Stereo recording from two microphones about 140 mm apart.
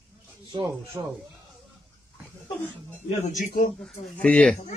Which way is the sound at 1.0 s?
20° right (ahead or behind).